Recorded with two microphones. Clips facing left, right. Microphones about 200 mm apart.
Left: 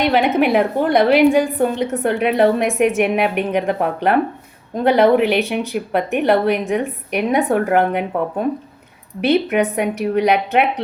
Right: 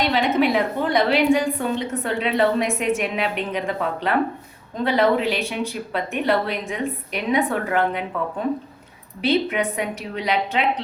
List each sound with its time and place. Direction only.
0.0 s a woman's voice: 55° left (ahead or behind)